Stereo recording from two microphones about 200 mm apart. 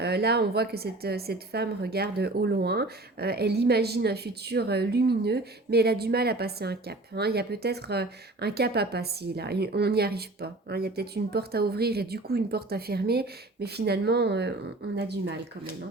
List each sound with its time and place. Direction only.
0.0 s a woman's voice: 55° right (ahead or behind)